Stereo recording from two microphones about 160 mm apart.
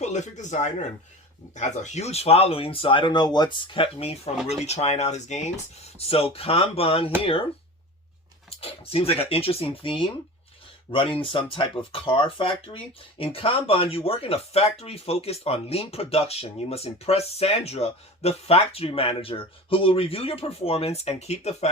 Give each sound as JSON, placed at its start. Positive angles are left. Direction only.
{"t": 0.0, "sound": "speech", "side_deg": 45}
{"t": 8.6, "sound": "speech", "side_deg": 40}